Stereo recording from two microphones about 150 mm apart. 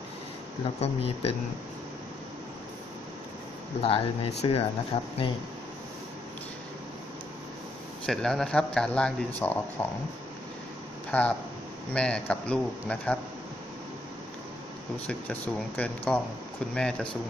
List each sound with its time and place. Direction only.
0.7 s speech: 40° left (ahead or behind)
3.8 s speech: 40° left (ahead or behind)
8.1 s speech: 5° left (ahead or behind)
11.1 s speech: 10° left (ahead or behind)
15.0 s speech: 10° left (ahead or behind)